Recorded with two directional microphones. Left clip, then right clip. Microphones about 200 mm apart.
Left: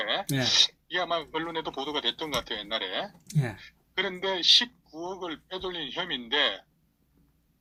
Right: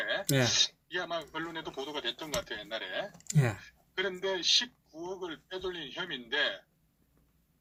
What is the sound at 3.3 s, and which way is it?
Speech, 35° right (ahead or behind).